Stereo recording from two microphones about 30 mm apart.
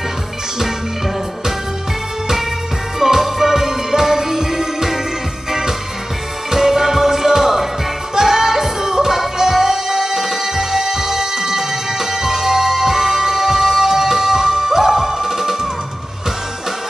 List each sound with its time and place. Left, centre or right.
3.0 s music: centre